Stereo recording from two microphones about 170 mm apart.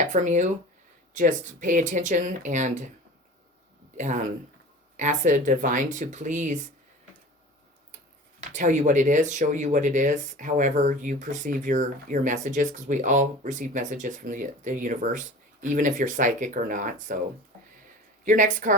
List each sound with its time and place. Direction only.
0.0 s speech: 45° right (ahead or behind)
3.9 s speech: 45° right (ahead or behind)
8.5 s speech: 45° right (ahead or behind)
18.3 s speech: 50° right (ahead or behind)